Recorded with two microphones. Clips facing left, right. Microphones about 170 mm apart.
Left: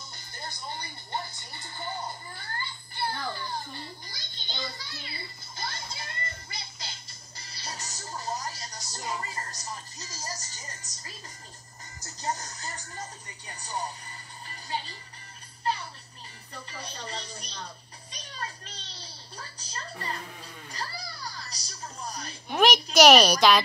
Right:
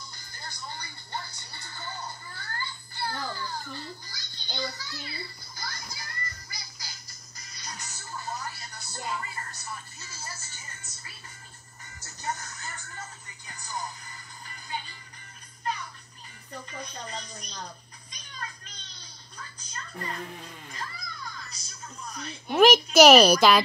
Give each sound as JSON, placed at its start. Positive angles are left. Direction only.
{"t": 0.1, "sound": "speech", "side_deg": 25}
{"t": 14.5, "sound": "music", "side_deg": 30}
{"t": 16.7, "sound": "speech", "side_deg": 30}
{"t": 18.1, "sound": "a sound", "side_deg": 30}
{"t": 23.0, "sound": "speech", "side_deg": -5}